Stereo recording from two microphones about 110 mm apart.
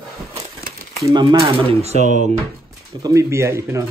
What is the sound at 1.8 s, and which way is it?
Speech, 85° right.